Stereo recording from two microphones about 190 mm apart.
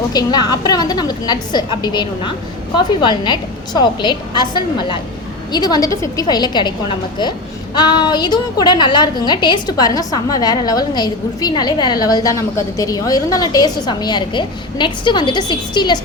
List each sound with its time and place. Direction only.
0.1 s a woman's voice: 20° left (ahead or behind)
7.8 s a woman's voice: 25° left (ahead or behind)